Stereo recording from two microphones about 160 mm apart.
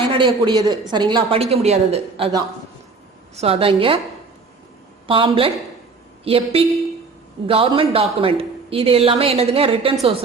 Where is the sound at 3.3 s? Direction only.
40° right (ahead or behind).